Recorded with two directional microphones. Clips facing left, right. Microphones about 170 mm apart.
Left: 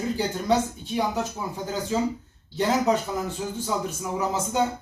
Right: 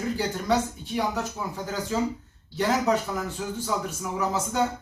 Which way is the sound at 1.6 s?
25° left (ahead or behind).